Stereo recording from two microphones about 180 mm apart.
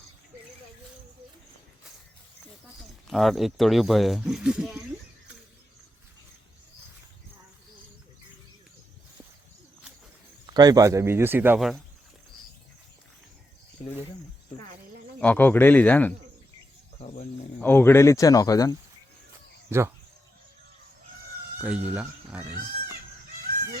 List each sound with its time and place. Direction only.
3.1 s speech: centre (ahead or behind)
10.5 s speech: 20° right (ahead or behind)
15.2 s speech: 10° left (ahead or behind)
17.6 s speech: 10° left (ahead or behind)
21.6 s speech: 5° right (ahead or behind)